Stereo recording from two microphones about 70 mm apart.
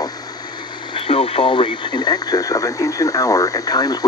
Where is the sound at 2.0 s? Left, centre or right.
Left.